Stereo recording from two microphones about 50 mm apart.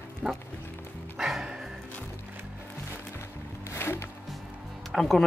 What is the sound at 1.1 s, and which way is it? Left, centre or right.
Music, centre.